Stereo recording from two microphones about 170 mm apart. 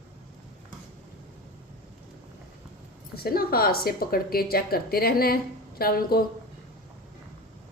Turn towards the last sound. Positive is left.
turn(degrees=60)  # may be behind; listen again after turning